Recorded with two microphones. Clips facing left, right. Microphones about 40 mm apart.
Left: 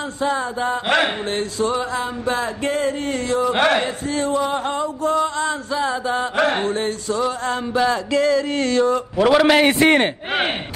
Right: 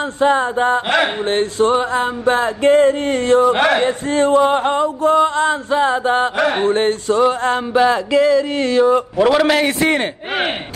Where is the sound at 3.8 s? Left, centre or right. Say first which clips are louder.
Right 7 dB; right.